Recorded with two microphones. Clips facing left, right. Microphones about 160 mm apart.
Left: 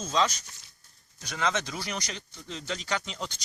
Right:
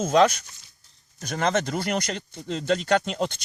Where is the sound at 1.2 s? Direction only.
50° right (ahead or behind).